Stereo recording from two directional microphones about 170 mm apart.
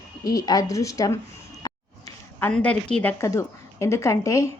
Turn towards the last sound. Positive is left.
turn(degrees=20)  # may be behind; listen again after turning